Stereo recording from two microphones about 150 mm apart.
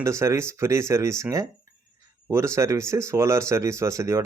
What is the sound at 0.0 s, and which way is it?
Speech, 20° right (ahead or behind).